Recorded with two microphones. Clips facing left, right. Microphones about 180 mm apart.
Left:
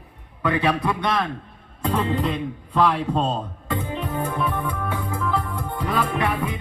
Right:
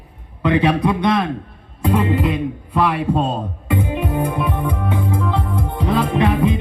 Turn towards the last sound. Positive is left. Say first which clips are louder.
# right 8 dB
turn(degrees=-20)  # may be behind; listen again after turning